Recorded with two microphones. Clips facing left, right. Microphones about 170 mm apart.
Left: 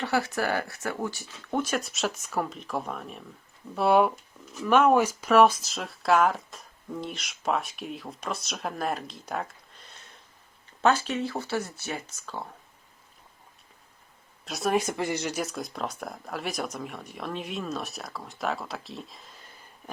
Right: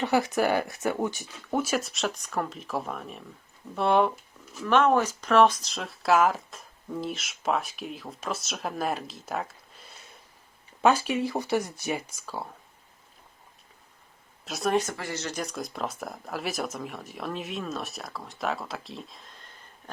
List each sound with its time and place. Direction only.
0.0 s speech: 20° right (ahead or behind)
14.4 s speech: centre (ahead or behind)
14.8 s speech: 15° left (ahead or behind); by 19.5 s centre (ahead or behind)